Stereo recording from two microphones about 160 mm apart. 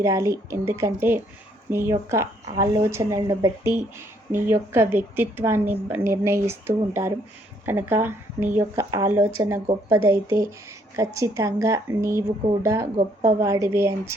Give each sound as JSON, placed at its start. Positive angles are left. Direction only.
{"t": 0.0, "sound": "a woman's voice", "side_deg": -20}